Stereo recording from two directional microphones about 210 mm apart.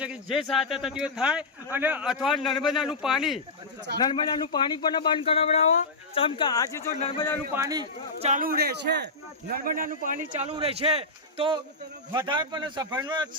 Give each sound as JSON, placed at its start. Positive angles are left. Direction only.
{"t": 0.0, "sound": "a sound", "side_deg": -5}
{"t": 0.4, "sound": "speech", "side_deg": 0}
{"t": 4.1, "sound": "speech", "side_deg": 20}
{"t": 7.0, "sound": "speech", "side_deg": 30}
{"t": 7.5, "sound": "a man's voice", "side_deg": -15}
{"t": 8.2, "sound": "a man's voice", "side_deg": -35}